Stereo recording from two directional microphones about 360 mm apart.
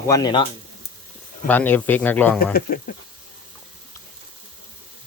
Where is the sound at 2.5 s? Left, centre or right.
Left.